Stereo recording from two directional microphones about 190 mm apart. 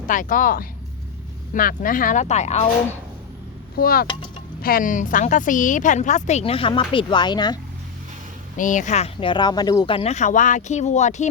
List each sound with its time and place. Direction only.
0.1 s speech: 45° left (ahead or behind)
3.8 s speech: 50° left (ahead or behind)
4.0 s speech: 25° left (ahead or behind)
4.6 s speech: 45° left (ahead or behind); by 7.6 s 20° left (ahead or behind)
8.5 s speech: 45° left (ahead or behind)